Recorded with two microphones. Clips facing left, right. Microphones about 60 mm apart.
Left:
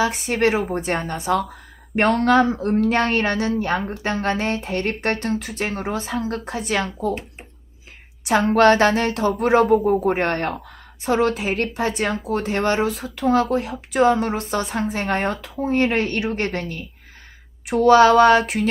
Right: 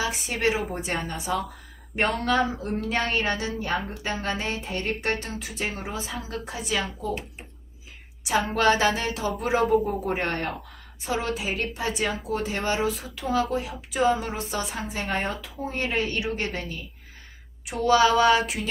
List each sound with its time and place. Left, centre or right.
0.2 s a woman's voice: left
8.2 s a woman's voice: left
9.6 s a woman's voice: left